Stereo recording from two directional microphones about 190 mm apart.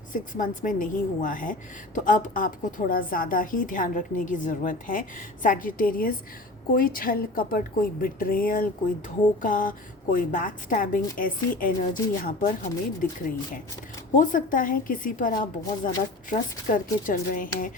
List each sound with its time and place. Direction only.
0.1 s a woman's voice: 45° left (ahead or behind)
14.2 s a woman's voice: 45° left (ahead or behind)